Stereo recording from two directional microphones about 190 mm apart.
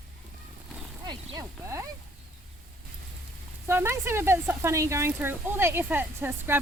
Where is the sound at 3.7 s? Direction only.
10° right (ahead or behind).